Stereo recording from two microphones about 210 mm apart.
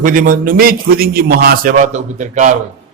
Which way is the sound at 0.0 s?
40° right (ahead or behind).